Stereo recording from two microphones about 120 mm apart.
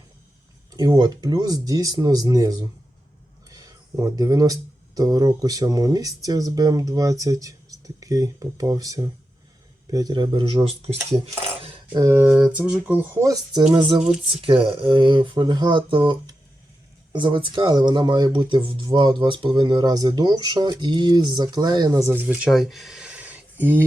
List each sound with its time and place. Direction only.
0.7 s speech: 30° right (ahead or behind); by 10.9 s 50° right (ahead or behind)
11.9 s speech: 25° right (ahead or behind)
12.4 s a sound: 10° right (ahead or behind)
13.2 s speech: 35° right (ahead or behind)
14.4 s speech: 45° right (ahead or behind); by 22.1 s 30° right (ahead or behind)
22.1 s speech: 15° right (ahead or behind)